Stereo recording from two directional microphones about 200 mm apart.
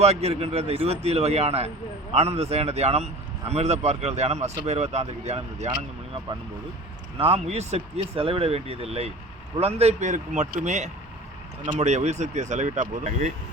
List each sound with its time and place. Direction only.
0.0 s speech: 30° right (ahead or behind)
7.2 s speech: 30° right (ahead or behind)